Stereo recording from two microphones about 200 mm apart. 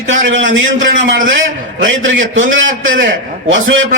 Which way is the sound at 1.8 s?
70° right (ahead or behind).